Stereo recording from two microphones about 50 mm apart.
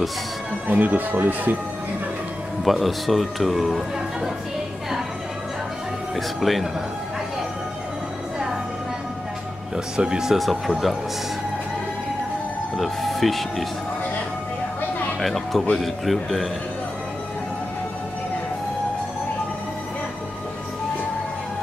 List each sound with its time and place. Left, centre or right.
0.7 s speech: right
2.6 s speech: centre
6.1 s speech: centre
9.9 s speech: centre
10.3 s speech: centre
12.7 s speech: centre
15.1 s speech: centre